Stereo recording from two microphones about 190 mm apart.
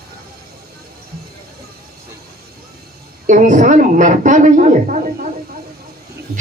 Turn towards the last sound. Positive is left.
turn(degrees=-45)  # may be behind; listen again after turning